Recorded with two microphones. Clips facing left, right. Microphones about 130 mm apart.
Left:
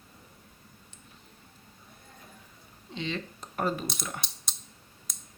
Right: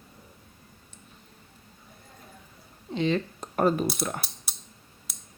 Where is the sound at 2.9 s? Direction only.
45° right (ahead or behind).